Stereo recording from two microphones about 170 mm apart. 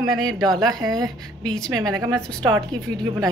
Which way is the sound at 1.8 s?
20° right (ahead or behind).